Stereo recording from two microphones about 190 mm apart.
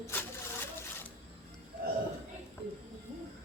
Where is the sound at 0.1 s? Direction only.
10° left (ahead or behind).